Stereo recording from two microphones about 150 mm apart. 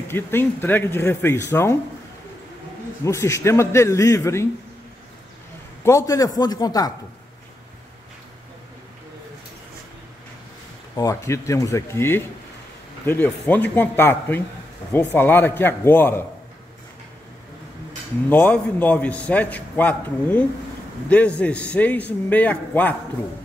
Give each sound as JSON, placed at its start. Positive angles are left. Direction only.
{"t": 0.1, "sound": "a man's voice", "side_deg": 15}
{"t": 3.0, "sound": "a man's voice", "side_deg": 20}
{"t": 5.9, "sound": "a man's voice", "side_deg": 20}
{"t": 11.0, "sound": "a man's voice", "side_deg": 20}
{"t": 18.3, "sound": "a man's voice", "side_deg": 10}